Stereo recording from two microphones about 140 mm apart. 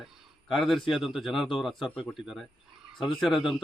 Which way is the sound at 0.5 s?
Centre (ahead or behind).